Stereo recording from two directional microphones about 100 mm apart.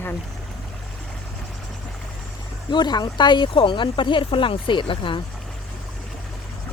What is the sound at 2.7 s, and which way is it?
Speech, 45° left (ahead or behind).